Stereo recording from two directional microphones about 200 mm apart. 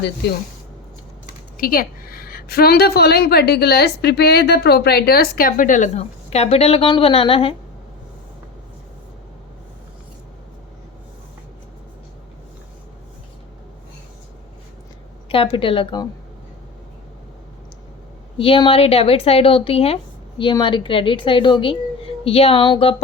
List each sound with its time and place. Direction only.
1.5 s a woman's voice: 45° left (ahead or behind); by 7.5 s 25° left (ahead or behind)
15.3 s a woman's voice: 25° left (ahead or behind)
18.3 s a woman's voice: 25° left (ahead or behind)